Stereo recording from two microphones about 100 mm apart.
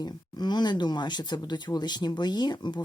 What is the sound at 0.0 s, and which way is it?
Speech, 45° left (ahead or behind).